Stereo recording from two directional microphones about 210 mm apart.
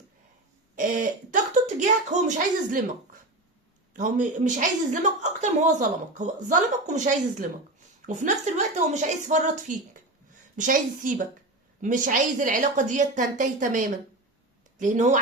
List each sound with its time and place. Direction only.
0.8 s a woman's voice: 35° right (ahead or behind)